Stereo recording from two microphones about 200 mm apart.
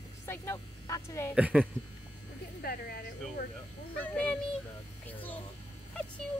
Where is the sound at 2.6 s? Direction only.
50° left (ahead or behind).